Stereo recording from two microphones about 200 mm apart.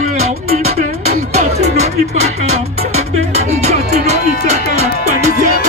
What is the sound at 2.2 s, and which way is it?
Speech, 35° right (ahead or behind).